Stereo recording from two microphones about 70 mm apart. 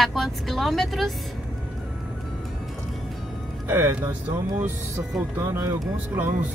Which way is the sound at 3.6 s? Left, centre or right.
Right.